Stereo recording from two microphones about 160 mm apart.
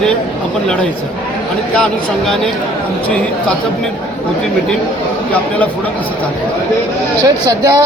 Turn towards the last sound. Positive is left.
turn(degrees=-20)  # may be behind; listen again after turning